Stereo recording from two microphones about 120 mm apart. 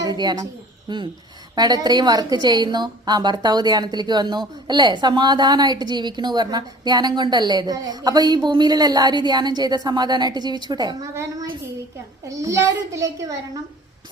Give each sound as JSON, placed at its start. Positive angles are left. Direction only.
{"t": 0.0, "sound": "a woman's voice", "side_deg": -35}
{"t": 11.1, "sound": "a child's voice", "side_deg": -20}